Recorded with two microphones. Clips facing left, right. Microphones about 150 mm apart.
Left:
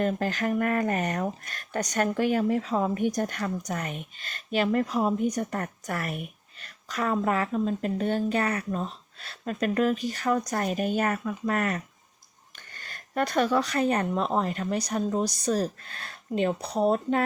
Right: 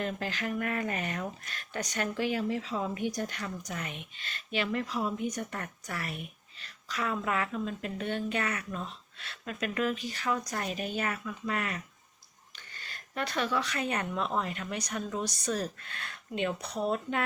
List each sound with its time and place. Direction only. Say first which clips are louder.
0.0 s a woman's voice: left 7 dB; 45° left (ahead or behind)